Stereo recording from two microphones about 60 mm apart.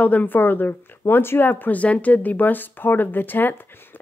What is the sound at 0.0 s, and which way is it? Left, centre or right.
Speech, left.